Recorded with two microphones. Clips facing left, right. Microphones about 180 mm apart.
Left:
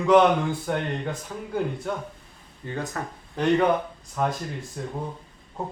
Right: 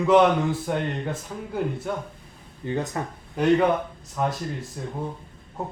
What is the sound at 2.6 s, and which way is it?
Speech, 20° right (ahead or behind).